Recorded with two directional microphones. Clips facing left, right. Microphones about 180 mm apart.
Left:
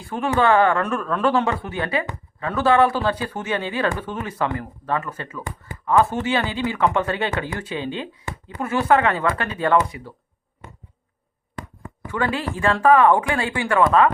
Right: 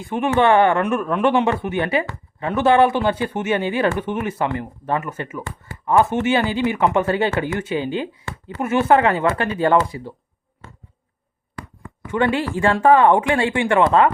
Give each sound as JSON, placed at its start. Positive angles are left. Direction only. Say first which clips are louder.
{"t": 0.0, "sound": "speech", "louder": "right 3 dB", "side_deg": -20}
{"t": 5.4, "sound": "speech", "louder": "right 1 dB", "side_deg": 15}
{"t": 5.8, "sound": "speech", "louder": "right 2 dB", "side_deg": -25}
{"t": 8.3, "sound": "speech", "louder": "even", "side_deg": 15}
{"t": 8.6, "sound": "speech", "louder": "right 3 dB", "side_deg": -25}
{"t": 11.6, "sound": "a sound", "louder": "left 1 dB", "side_deg": 20}
{"t": 12.0, "sound": "speech", "louder": "right 4 dB", "side_deg": -25}